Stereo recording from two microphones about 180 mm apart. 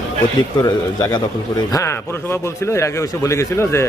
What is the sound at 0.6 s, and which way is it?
Speech, 20° left (ahead or behind).